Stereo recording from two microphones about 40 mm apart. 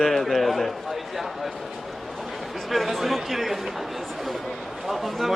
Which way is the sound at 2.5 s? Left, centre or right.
Centre.